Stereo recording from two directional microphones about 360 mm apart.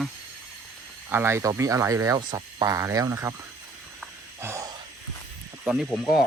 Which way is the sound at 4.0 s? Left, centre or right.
Centre.